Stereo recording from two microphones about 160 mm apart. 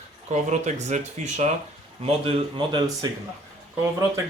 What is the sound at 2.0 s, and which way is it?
Speech, 30° right (ahead or behind).